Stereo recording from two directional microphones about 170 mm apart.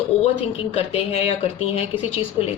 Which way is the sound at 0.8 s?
35° left (ahead or behind).